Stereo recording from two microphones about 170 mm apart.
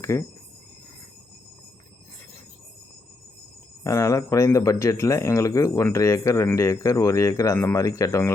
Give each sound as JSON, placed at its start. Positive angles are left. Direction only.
{"t": 0.0, "sound": "speech", "side_deg": 15}
{"t": 3.8, "sound": "speech", "side_deg": 20}